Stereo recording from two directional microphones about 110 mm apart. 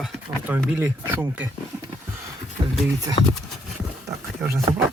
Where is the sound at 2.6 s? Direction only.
45° right (ahead or behind).